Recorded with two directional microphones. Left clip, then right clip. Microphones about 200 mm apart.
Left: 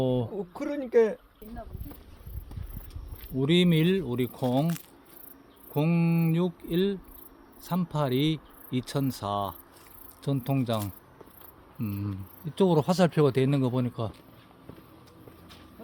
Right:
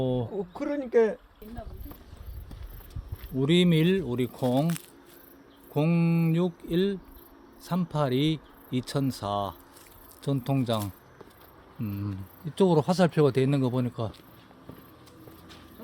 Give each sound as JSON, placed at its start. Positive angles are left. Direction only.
{"t": 0.0, "sound": "a sound", "side_deg": 20}
{"t": 0.3, "sound": "speech", "side_deg": 0}
{"t": 3.3, "sound": "speech", "side_deg": 0}
{"t": 5.7, "sound": "speech", "side_deg": 0}
{"t": 11.8, "sound": "speech", "side_deg": 15}